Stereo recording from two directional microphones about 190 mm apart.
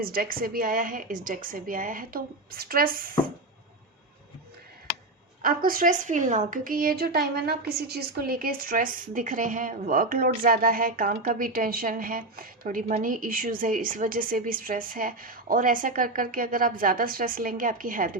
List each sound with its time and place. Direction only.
0.0 s a woman's voice: 50° right (ahead or behind)
5.4 s a woman's voice: 50° right (ahead or behind)